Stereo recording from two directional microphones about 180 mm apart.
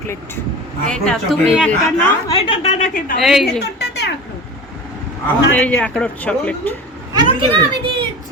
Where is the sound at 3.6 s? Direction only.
70° left (ahead or behind).